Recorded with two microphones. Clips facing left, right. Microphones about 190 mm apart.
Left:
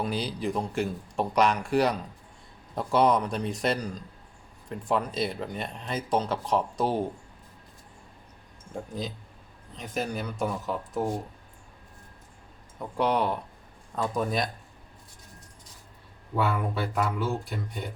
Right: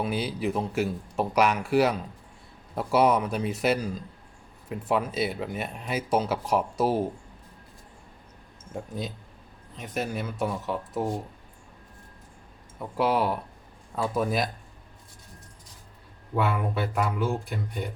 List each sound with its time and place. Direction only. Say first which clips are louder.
0.0 s speech: right 2 dB; 5° right (ahead or behind)
8.7 s speech: even; centre (ahead or behind)
12.8 s speech: right 1 dB; 5° right (ahead or behind)
16.3 s speech: right 1 dB; centre (ahead or behind)